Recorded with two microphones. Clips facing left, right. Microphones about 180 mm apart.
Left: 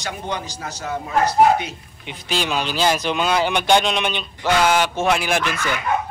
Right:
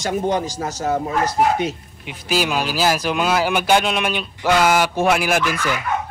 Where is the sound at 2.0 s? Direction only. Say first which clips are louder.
Right 4 dB; 5° right (ahead or behind).